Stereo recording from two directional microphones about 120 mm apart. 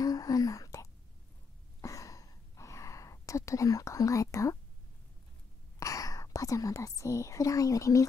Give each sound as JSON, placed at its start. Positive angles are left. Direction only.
{"t": 0.0, "sound": "whispering", "side_deg": 30}
{"t": 1.8, "sound": "a sound", "side_deg": 25}
{"t": 5.8, "sound": "speech", "side_deg": 30}